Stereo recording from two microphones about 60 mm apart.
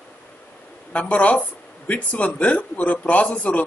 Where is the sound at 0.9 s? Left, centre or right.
Left.